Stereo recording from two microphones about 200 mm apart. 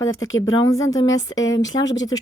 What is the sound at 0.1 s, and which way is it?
Speech, 80° left.